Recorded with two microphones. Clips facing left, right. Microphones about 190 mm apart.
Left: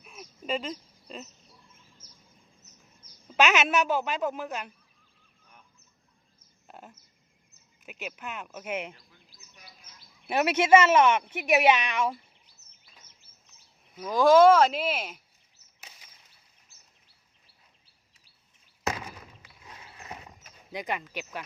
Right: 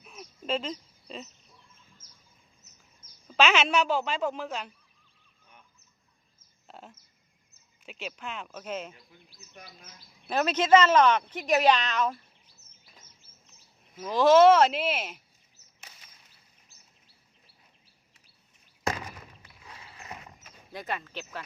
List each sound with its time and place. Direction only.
0.0 s a sound: centre (ahead or behind)
3.4 s a woman's voice: centre (ahead or behind)
6.7 s a sound: 5° left (ahead or behind)
7.9 s speech: 5° left (ahead or behind)
9.6 s bird: 55° right (ahead or behind)
10.2 s speech: 10° left (ahead or behind)
13.9 s a woman's voice: centre (ahead or behind)
20.7 s speech: 15° left (ahead or behind)